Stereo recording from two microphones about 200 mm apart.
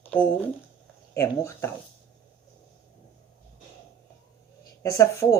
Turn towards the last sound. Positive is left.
turn(degrees=15)  # may be behind; listen again after turning